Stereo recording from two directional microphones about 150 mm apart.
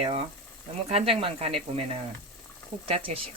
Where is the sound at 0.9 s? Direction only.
40° right (ahead or behind).